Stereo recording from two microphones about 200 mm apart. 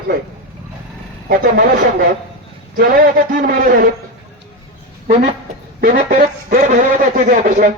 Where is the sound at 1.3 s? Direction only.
45° right (ahead or behind).